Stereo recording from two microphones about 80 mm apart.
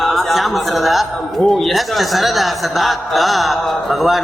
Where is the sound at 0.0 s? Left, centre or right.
Centre.